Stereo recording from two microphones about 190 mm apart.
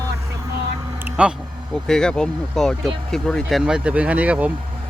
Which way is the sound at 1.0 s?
5° right (ahead or behind).